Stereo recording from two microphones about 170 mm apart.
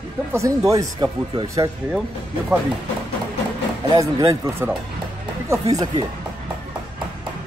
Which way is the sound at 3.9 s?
20° right (ahead or behind).